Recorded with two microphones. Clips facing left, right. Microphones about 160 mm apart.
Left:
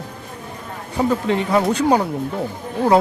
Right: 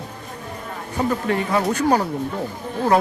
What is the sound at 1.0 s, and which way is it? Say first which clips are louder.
Speech: left 3 dB; 15° left (ahead or behind).